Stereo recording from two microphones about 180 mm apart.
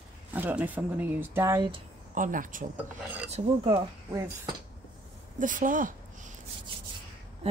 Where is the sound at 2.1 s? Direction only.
45° right (ahead or behind).